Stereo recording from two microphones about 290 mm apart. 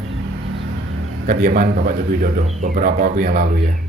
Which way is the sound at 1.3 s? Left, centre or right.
Right.